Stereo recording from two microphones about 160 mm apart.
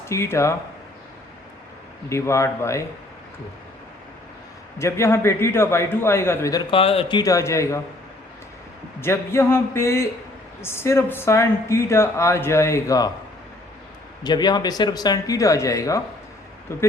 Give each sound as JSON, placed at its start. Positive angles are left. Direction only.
{"t": 0.1, "sound": "speech", "side_deg": 15}
{"t": 2.0, "sound": "speech", "side_deg": 20}
{"t": 4.8, "sound": "speech", "side_deg": 15}
{"t": 7.2, "sound": "speech", "side_deg": 20}
{"t": 9.0, "sound": "speech", "side_deg": 15}
{"t": 14.3, "sound": "speech", "side_deg": 25}